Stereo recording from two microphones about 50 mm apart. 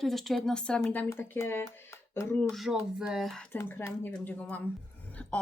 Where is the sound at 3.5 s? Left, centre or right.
Left.